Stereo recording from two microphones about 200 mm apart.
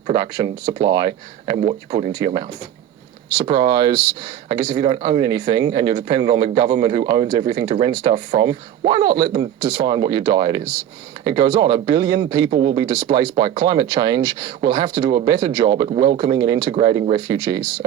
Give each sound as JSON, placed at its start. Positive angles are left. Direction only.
{"t": 0.1, "sound": "speech", "side_deg": -20}
{"t": 1.6, "sound": "speech", "side_deg": -30}
{"t": 2.1, "sound": "speech", "side_deg": -20}